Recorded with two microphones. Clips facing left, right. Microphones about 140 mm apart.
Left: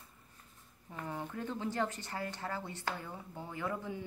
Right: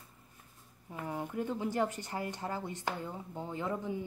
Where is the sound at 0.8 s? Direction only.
10° right (ahead or behind).